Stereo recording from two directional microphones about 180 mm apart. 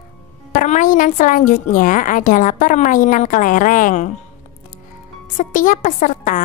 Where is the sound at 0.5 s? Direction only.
45° left (ahead or behind).